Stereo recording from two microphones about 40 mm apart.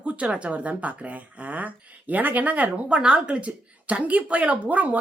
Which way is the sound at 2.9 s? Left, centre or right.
Right.